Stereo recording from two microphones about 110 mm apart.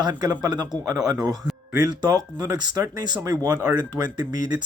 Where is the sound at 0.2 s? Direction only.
35° right (ahead or behind).